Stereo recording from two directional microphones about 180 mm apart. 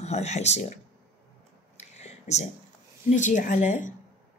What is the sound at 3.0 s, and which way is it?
Speech, 45° left (ahead or behind).